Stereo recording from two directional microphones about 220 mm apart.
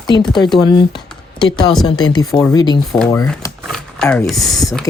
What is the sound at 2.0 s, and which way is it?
Speech, 20° left (ahead or behind).